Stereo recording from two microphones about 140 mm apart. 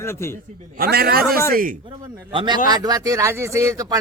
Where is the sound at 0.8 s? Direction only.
90° right.